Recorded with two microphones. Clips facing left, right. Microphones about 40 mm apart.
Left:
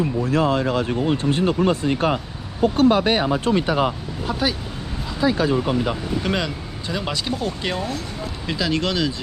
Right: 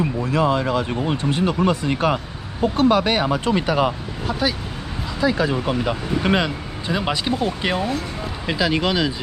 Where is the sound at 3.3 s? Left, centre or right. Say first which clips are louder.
Even; right.